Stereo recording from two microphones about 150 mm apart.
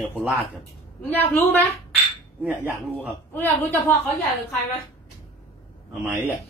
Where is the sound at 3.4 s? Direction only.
15° left (ahead or behind).